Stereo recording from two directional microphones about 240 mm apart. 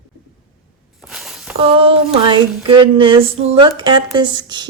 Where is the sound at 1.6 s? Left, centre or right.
Right.